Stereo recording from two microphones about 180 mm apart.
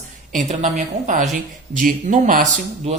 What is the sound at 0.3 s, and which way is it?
A woman's voice, 45° right (ahead or behind).